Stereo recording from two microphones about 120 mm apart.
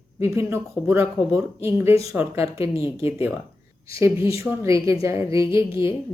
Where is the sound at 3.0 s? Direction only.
20° right (ahead or behind).